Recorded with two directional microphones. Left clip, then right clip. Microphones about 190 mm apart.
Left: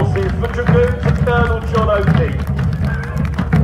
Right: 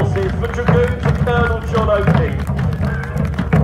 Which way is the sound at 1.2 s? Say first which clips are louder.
Left 1 dB; centre (ahead or behind).